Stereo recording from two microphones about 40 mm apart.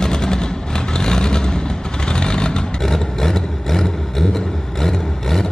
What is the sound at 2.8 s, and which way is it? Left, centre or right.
Vehicle, centre.